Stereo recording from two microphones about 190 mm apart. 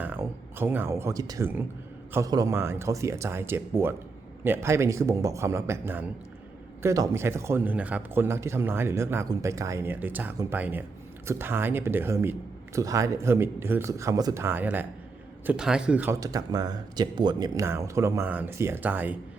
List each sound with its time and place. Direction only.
0.0 s a man's voice: 10° right (ahead or behind)
16.2 s a man's voice: 20° right (ahead or behind)